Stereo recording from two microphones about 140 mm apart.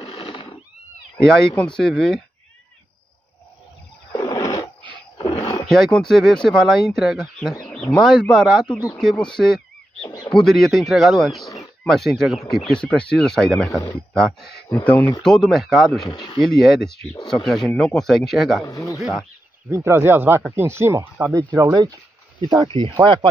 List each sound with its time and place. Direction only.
0.0 s neigh: 45° left (ahead or behind)
1.1 s speech: 5° left (ahead or behind)
4.1 s wild animals: 30° left (ahead or behind)
5.7 s speech: 5° left (ahead or behind)
10.3 s speech: centre (ahead or behind)
14.9 s speech: 10° left (ahead or behind)
16.1 s speech: 30° left (ahead or behind)
16.3 s speech: centre (ahead or behind)
18.7 s speech: 20° left (ahead or behind)
18.9 s speech: centre (ahead or behind)
19.7 s speech: 20° right (ahead or behind); by 23.1 s 35° right (ahead or behind)